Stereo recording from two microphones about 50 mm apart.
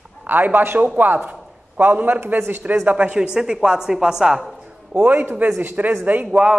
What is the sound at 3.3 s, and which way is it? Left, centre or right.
A woman's voice, centre.